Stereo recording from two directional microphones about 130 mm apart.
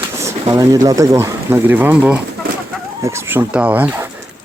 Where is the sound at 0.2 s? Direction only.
25° right (ahead or behind).